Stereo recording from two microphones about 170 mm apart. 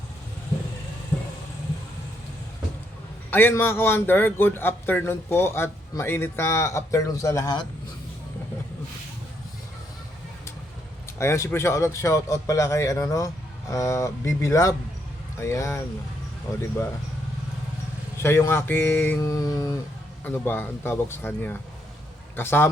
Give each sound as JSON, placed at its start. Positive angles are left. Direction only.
{"t": 3.2, "sound": "a man's voice", "side_deg": 10}
{"t": 11.2, "sound": "a man's voice", "side_deg": 15}
{"t": 18.2, "sound": "a man's voice", "side_deg": 15}